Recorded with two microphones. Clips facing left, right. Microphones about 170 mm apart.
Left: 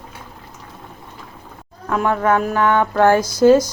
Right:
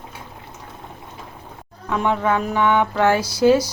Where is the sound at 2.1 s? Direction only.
20° right (ahead or behind).